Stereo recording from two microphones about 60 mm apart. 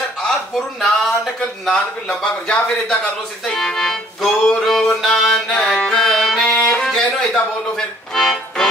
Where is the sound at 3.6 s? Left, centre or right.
Centre.